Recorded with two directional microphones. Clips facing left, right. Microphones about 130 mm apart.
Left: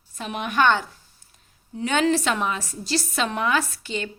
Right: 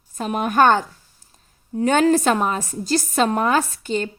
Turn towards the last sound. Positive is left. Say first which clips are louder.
# right 5 dB
turn(degrees=-45)  # may be behind; listen again after turning